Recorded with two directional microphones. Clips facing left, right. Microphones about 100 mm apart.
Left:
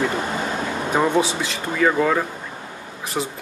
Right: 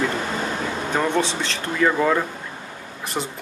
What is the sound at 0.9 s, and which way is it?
Speech, 10° left (ahead or behind).